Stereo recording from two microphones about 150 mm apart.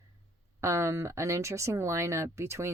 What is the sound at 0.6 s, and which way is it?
Speech, 20° right (ahead or behind).